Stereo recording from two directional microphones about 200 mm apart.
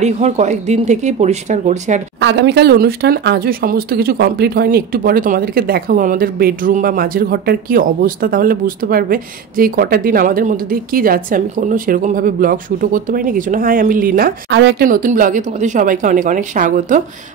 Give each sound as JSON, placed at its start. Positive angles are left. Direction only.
{"t": 0.0, "sound": "a woman's voice", "side_deg": -35}
{"t": 2.1, "sound": "speech", "side_deg": -60}
{"t": 14.9, "sound": "a woman's voice", "side_deg": -40}